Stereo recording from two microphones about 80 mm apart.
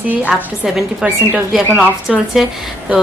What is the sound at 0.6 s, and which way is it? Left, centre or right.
A woman's voice, centre.